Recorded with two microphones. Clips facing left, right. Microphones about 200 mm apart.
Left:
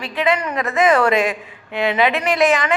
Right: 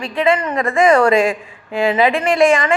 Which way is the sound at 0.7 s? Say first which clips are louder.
Right 3 dB; 5° left (ahead or behind).